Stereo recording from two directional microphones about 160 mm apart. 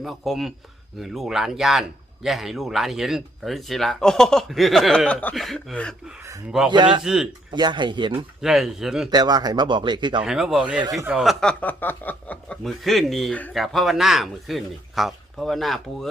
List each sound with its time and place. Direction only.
0.0 s speech: centre (ahead or behind)
6.7 s speech: 30° right (ahead or behind)
7.0 s speech: 5° right (ahead or behind)
7.5 s speech: 30° right (ahead or behind)
8.4 s speech: centre (ahead or behind)
9.0 s speech: 25° right (ahead or behind)
10.2 s speech: 5° right (ahead or behind)